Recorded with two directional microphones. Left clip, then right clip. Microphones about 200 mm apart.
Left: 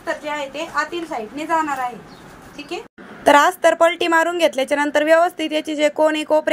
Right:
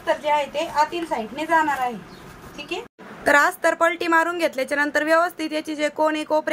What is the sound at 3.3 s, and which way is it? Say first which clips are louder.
A woman's voice: left 5 dB; 15° left (ahead or behind).